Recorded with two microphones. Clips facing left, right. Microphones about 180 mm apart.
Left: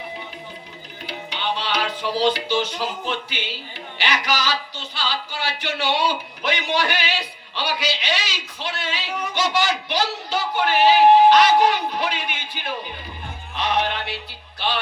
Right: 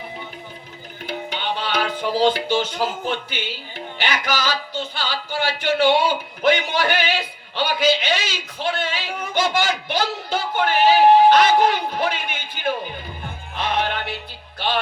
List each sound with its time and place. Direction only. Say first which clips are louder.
1.0 s music: right 1 dB; 50° right (ahead or behind)
3.9 s speech: even; 50° right (ahead or behind)
13.6 s music: even; 50° right (ahead or behind)